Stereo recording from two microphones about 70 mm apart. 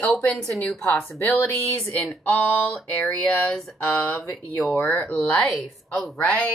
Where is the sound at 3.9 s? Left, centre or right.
Left.